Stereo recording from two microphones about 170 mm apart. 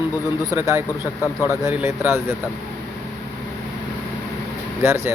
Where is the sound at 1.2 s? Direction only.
15° left (ahead or behind).